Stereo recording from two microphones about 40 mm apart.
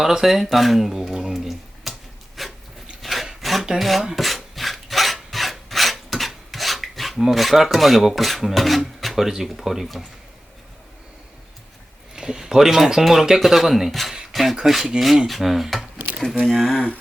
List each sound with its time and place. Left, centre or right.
0.0 s speech: centre
1.5 s finger snapping: centre
3.0 s rub: centre
3.8 s filing: centre
9.0 s a sound: centre
9.2 s speech: centre
12.1 s speech: centre
16.7 s mantra: left